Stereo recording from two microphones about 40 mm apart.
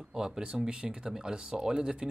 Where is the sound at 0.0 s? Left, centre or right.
Centre.